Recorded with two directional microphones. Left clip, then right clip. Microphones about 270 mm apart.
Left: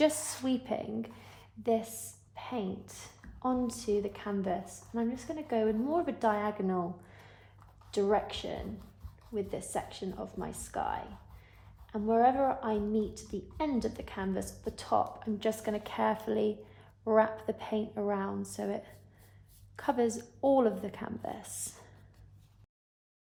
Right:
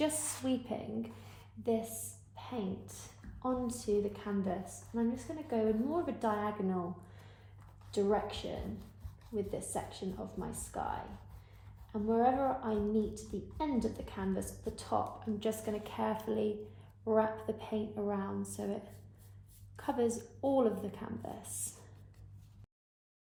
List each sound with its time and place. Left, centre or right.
0.0 s a woman's voice: left
7.9 s a woman's voice: left
9.7 s a woman's voice: left